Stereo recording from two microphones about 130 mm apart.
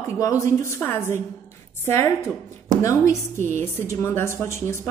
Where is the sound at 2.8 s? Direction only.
25° left (ahead or behind).